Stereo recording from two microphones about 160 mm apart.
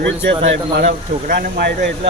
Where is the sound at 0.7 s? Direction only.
85° right.